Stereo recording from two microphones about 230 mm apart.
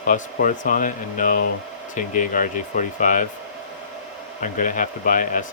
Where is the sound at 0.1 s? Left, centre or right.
Left.